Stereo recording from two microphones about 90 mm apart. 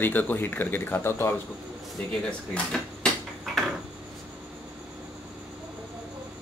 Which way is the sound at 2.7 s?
5° left (ahead or behind).